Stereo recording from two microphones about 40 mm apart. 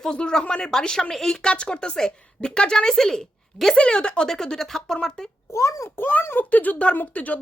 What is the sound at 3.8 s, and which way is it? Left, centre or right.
Speech, left.